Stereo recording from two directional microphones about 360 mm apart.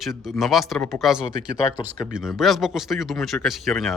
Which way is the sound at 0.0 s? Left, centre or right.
Centre.